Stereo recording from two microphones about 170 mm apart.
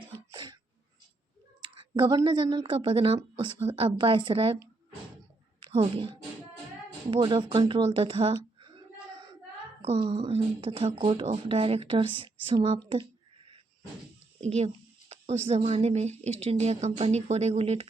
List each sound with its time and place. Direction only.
0.3 s throat clearing: 20° right (ahead or behind)
1.6 s speech: 30° right (ahead or behind)
5.5 s a sound: 35° right (ahead or behind)
7.1 s speech: 30° right (ahead or behind)
9.8 s speech: 35° right (ahead or behind)
14.4 s speech: 40° right (ahead or behind)